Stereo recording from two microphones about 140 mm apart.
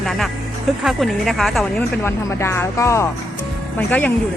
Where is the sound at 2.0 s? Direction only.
15° left (ahead or behind).